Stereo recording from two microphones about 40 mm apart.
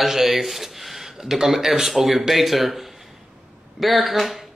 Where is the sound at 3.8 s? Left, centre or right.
Centre.